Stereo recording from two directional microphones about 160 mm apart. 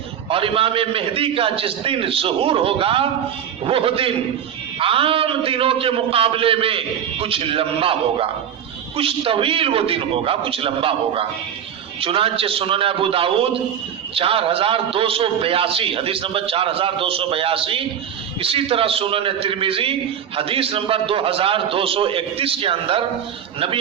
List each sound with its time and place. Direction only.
0.3 s a man's voice: 35° right (ahead or behind)